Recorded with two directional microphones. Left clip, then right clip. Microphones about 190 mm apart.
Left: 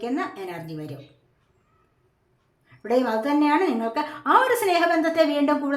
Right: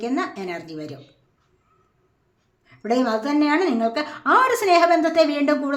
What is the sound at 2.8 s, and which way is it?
A woman's voice, 20° right (ahead or behind).